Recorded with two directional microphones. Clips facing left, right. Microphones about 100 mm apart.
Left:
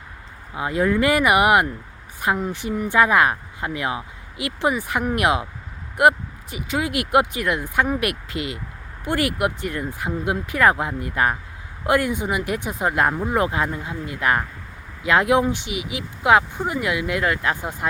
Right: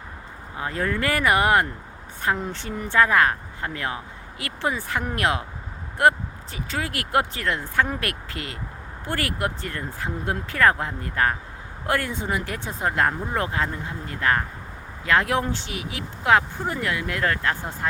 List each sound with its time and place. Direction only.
0.5 s speech: 15° left (ahead or behind)